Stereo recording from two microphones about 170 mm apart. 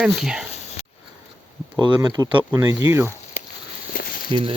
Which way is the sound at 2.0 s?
20° right (ahead or behind).